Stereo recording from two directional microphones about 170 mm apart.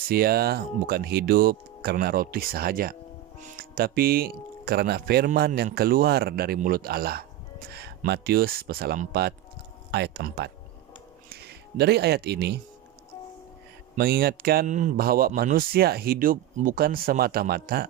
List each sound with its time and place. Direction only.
0.1 s a man's voice: 65° right (ahead or behind)
7.7 s a man's voice: 75° right (ahead or behind)
9.9 s speech: 80° right
13.9 s a man's voice: 60° right (ahead or behind)